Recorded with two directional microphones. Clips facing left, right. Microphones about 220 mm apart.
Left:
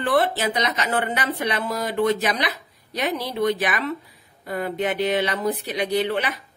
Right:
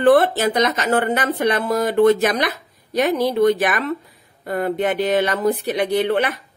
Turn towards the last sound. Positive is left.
turn(degrees=-50)  # may be behind; listen again after turning